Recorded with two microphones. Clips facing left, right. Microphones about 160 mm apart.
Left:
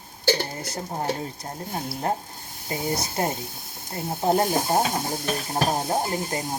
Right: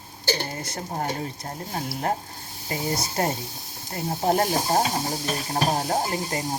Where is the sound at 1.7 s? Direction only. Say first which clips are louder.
Even; 25° left (ahead or behind).